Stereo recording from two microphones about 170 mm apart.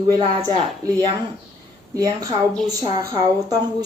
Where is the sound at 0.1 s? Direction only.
25° right (ahead or behind).